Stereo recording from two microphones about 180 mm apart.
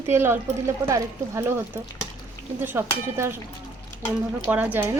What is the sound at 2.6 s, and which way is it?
Speech, 10° right (ahead or behind).